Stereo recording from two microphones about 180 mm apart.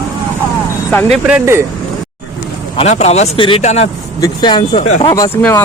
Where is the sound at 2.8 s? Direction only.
40° left (ahead or behind).